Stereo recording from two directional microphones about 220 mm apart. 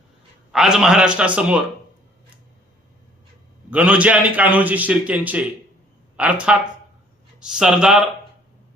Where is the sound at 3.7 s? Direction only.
5° right (ahead or behind).